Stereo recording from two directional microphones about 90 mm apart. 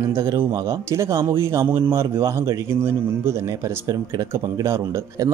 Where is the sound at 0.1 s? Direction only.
30° right (ahead or behind).